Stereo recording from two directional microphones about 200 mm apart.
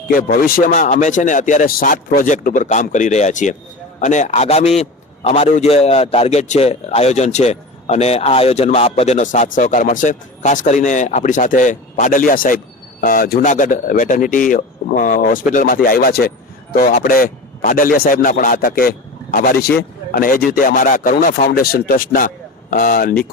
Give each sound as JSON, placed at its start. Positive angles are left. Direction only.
{"t": 0.1, "sound": "a man's voice", "side_deg": 45}